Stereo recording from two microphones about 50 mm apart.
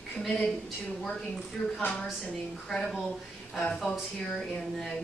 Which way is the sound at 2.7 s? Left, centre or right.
Centre.